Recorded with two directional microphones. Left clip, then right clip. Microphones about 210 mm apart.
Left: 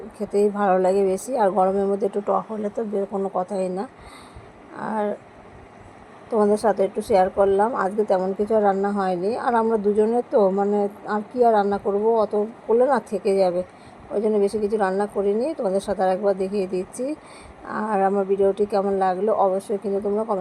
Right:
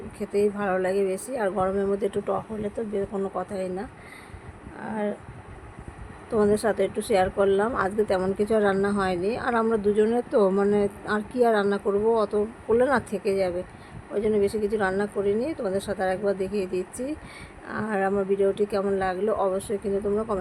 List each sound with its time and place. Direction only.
0.2 s a woman's voice: 10° left (ahead or behind)
3.4 s a woman's voice: 10° left (ahead or behind)
6.3 s a woman's voice: 5° left (ahead or behind)
11.5 s speech: 25° right (ahead or behind)
12.1 s a woman's voice: 5° right (ahead or behind)